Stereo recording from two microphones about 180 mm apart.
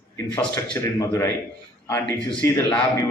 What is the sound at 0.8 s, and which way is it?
Speech, 15° left (ahead or behind).